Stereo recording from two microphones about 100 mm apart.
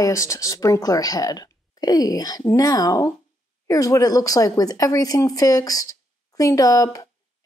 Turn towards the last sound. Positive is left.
turn(degrees=35)  # may be behind; listen again after turning